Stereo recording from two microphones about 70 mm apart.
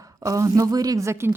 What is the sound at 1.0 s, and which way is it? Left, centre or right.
Speech, right.